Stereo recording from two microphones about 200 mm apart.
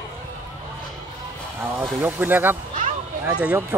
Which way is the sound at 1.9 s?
5° right (ahead or behind).